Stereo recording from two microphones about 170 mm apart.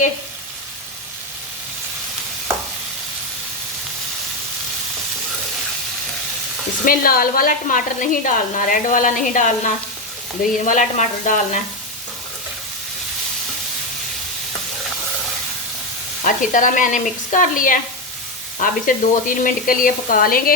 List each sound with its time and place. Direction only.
6.8 s a woman's voice: 55° left (ahead or behind)
16.2 s a woman's voice: 50° left (ahead or behind)
18.6 s frying: 55° left (ahead or behind)